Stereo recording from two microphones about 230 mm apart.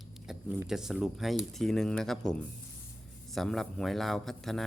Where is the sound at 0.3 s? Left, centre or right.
Centre.